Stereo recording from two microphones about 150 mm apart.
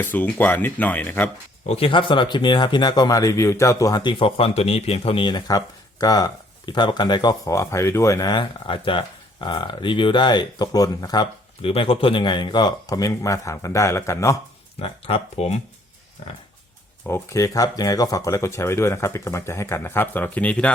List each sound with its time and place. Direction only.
0.0 s speech: 10° left (ahead or behind)
1.6 s speech: 40° left (ahead or behind); by 14.3 s 20° left (ahead or behind)
14.8 s speech: 40° left (ahead or behind)
17.1 s speech: 20° left (ahead or behind)